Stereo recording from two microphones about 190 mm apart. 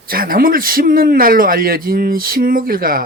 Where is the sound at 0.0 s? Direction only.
50° right (ahead or behind).